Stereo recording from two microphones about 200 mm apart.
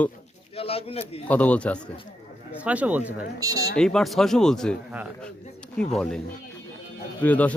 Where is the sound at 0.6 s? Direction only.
30° left (ahead or behind).